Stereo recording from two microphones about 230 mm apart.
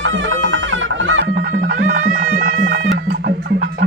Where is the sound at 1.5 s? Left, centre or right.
Right.